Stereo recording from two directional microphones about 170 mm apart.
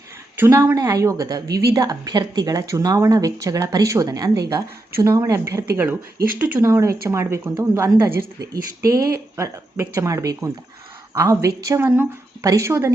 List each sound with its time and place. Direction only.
0.3 s speech: 15° right (ahead or behind)
8.1 s speech: 60° right (ahead or behind)
8.8 s speech: 20° right (ahead or behind)